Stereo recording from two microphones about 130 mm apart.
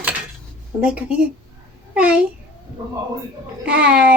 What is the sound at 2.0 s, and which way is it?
Speech, 10° right (ahead or behind).